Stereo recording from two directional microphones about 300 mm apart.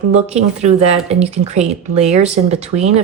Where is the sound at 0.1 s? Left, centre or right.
Right.